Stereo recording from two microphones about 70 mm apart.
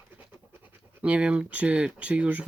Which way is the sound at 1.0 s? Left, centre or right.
Centre.